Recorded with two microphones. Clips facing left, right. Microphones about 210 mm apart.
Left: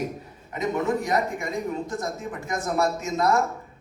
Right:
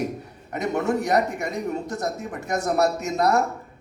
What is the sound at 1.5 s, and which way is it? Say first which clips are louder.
Speech: right 1 dB; 70° right (ahead or behind).